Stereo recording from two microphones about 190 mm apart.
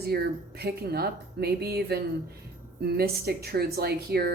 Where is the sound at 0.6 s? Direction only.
55° right (ahead or behind).